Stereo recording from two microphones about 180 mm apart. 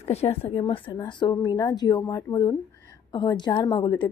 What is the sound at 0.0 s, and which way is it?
A woman's voice, 35° left (ahead or behind).